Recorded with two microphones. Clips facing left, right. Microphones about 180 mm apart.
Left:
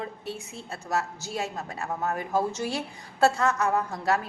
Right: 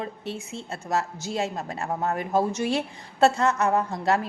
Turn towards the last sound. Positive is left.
turn(degrees=-25)  # may be behind; listen again after turning